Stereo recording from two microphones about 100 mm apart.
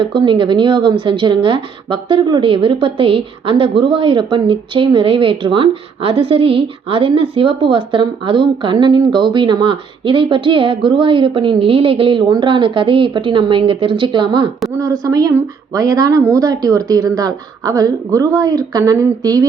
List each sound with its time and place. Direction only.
0.0 s a woman's voice: 50° right (ahead or behind)
14.8 s a woman's voice: 35° right (ahead or behind)